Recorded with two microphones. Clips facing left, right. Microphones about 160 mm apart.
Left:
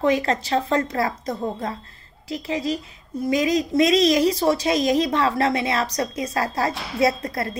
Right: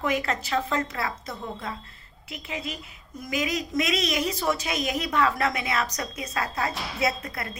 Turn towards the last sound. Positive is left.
turn(degrees=35)  # may be behind; listen again after turning